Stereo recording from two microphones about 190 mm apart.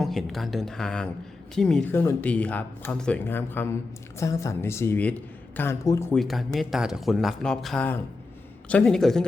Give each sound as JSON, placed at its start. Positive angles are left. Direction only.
{"t": 0.0, "sound": "speech", "side_deg": 0}
{"t": 6.1, "sound": "speech", "side_deg": 0}